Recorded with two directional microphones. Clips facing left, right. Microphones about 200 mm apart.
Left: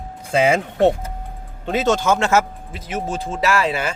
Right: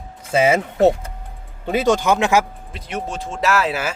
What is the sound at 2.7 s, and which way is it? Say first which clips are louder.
Speech: left 2 dB; centre (ahead or behind).